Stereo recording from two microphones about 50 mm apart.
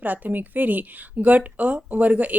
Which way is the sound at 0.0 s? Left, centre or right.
Right.